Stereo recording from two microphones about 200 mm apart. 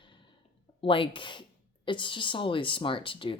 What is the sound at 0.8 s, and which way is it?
Speech, 25° left (ahead or behind).